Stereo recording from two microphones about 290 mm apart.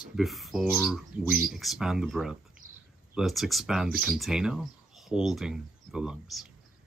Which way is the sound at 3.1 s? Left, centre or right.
Centre.